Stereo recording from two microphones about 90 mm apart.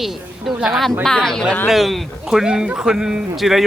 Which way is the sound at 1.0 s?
5° left (ahead or behind).